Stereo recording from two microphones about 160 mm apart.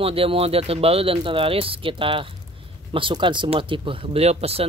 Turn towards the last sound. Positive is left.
turn(degrees=-40)  # may be behind; listen again after turning